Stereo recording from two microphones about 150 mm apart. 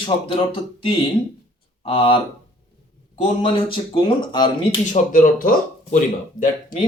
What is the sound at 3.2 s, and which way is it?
Speech, 35° left (ahead or behind).